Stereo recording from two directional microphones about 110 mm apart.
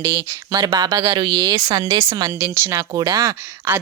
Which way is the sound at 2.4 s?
25° right (ahead or behind).